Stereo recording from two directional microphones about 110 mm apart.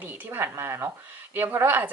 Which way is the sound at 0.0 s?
20° right (ahead or behind).